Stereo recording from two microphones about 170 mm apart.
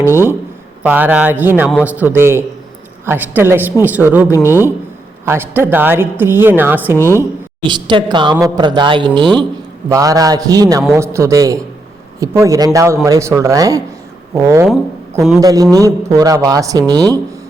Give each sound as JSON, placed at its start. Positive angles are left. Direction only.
{"t": 0.0, "sound": "a woman's voice", "side_deg": -15}
{"t": 7.7, "sound": "a man's voice", "side_deg": -25}